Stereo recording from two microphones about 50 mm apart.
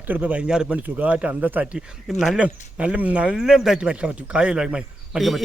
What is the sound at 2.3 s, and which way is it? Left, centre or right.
A man's voice, right.